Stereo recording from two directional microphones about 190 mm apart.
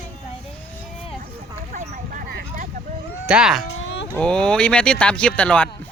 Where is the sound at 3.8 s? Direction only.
70° left (ahead or behind).